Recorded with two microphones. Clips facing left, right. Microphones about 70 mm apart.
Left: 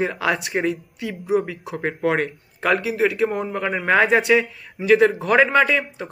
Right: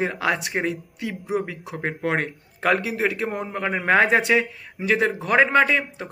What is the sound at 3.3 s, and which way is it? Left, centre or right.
Speech, centre.